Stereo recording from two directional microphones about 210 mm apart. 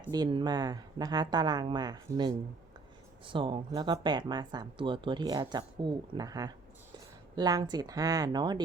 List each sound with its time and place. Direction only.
0.1 s speech: 20° right (ahead or behind)